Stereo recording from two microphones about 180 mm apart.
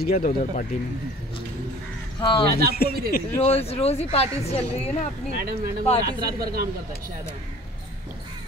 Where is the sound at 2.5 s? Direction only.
55° right (ahead or behind).